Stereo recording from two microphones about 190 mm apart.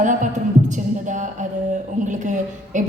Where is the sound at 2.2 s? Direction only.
40° right (ahead or behind).